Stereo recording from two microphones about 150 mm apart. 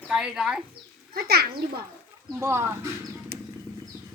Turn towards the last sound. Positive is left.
turn(degrees=-90)